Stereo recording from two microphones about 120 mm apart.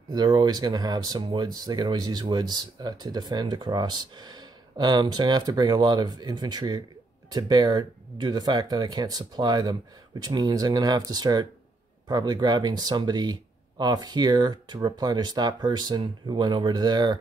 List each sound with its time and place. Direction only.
0.1 s speech: 35° right (ahead or behind)